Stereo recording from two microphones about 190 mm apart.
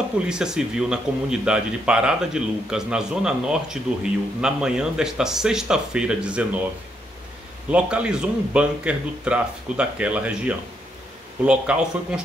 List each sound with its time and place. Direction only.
0.3 s speech: 5° right (ahead or behind)
7.7 s speech: 5° right (ahead or behind)